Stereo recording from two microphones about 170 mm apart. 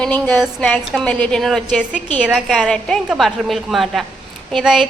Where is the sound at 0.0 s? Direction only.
5° left (ahead or behind).